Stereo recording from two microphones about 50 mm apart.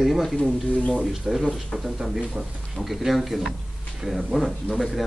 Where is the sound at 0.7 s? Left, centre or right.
Left.